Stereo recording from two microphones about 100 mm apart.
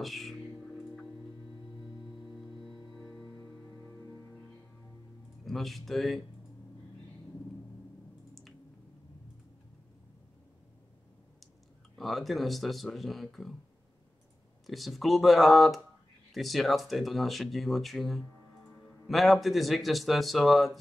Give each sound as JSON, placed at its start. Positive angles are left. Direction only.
{"t": 0.0, "sound": "music", "side_deg": 0}
{"t": 3.3, "sound": "music", "side_deg": 35}
{"t": 5.4, "sound": "speech", "side_deg": 0}
{"t": 12.0, "sound": "speech", "side_deg": 0}
{"t": 14.7, "sound": "speech", "side_deg": 0}